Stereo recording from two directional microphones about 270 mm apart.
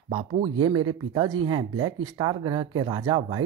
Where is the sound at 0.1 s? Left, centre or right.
Centre.